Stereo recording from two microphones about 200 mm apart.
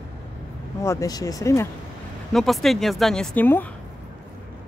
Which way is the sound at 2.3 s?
Centre (ahead or behind).